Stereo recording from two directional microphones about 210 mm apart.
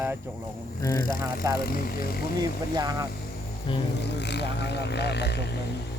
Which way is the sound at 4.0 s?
55° left (ahead or behind).